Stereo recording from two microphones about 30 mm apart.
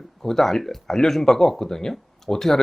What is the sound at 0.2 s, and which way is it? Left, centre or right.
Speech, centre.